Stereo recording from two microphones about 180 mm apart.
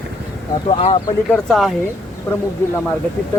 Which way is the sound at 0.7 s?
40° left (ahead or behind).